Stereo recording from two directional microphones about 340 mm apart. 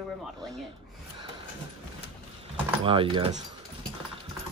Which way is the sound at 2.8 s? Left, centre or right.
Centre.